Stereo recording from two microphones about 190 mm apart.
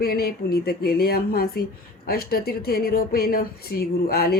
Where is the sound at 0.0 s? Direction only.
55° left (ahead or behind).